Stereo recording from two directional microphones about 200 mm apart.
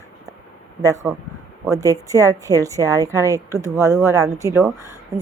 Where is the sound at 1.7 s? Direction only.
15° right (ahead or behind).